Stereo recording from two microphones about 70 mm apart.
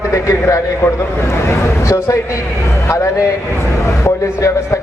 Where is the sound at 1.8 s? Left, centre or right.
Left.